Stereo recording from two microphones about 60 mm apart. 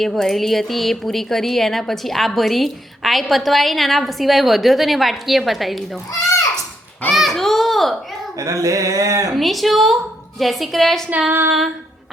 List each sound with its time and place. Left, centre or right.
0.0 s a woman's voice: centre
7.1 s a woman's voice: centre
8.4 s speech: right
9.3 s a woman's voice: centre
11.3 s female singing: right